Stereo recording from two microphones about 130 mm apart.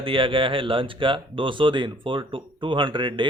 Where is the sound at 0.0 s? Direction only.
45° right (ahead or behind).